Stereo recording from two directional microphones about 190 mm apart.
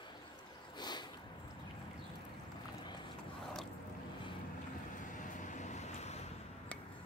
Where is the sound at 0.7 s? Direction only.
20° left (ahead or behind).